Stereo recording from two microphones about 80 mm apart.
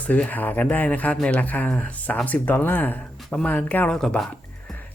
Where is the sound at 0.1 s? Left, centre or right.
Left.